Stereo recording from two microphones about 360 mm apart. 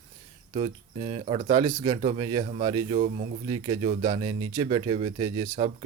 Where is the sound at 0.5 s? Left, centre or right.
Centre.